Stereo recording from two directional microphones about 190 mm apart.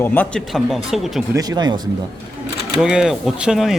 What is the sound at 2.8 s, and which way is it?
Speech, 5° right (ahead or behind).